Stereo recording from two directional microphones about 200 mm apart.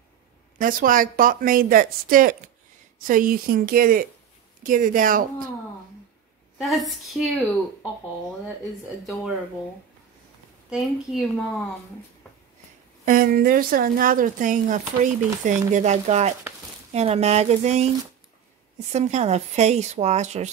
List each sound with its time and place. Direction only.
0.6 s speech: 45° right (ahead or behind)
6.6 s a woman's voice: centre (ahead or behind)
9.0 s a woman's voice: centre (ahead or behind)
10.7 s a woman's voice: centre (ahead or behind)
13.0 s speech: 45° right (ahead or behind)
18.9 s speech: 35° right (ahead or behind)